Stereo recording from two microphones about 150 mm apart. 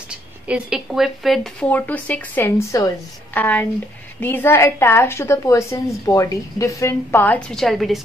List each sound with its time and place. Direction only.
0.5 s a woman's voice: 5° right (ahead or behind)